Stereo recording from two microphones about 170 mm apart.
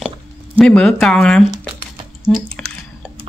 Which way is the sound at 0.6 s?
5° left (ahead or behind).